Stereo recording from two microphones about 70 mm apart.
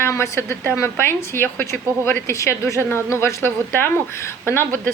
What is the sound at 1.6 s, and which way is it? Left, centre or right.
Speech, left.